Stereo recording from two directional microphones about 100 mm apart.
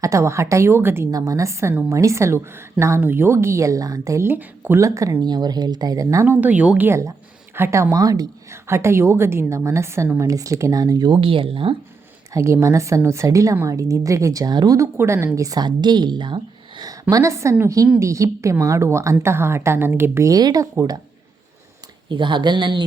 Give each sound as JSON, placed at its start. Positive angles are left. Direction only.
{"t": 0.0, "sound": "a woman's voice", "side_deg": -30}
{"t": 1.1, "sound": "a woman's voice", "side_deg": -35}
{"t": 4.4, "sound": "a woman's voice", "side_deg": -20}
{"t": 4.8, "sound": "a woman's voice", "side_deg": -30}
{"t": 5.2, "sound": "speech", "side_deg": -45}
{"t": 6.2, "sound": "a woman's voice", "side_deg": -20}
{"t": 8.6, "sound": "a woman's voice", "side_deg": -25}
{"t": 11.2, "sound": "speech", "side_deg": -60}
{"t": 12.3, "sound": "a woman's voice", "side_deg": -30}
{"t": 14.8, "sound": "a woman's voice", "side_deg": -25}
{"t": 15.4, "sound": "a woman's voice", "side_deg": -40}
{"t": 20.3, "sound": "a woman's voice", "side_deg": -40}
{"t": 22.1, "sound": "speech", "side_deg": -55}